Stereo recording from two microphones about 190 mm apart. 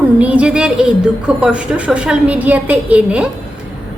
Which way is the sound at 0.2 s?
5° right (ahead or behind).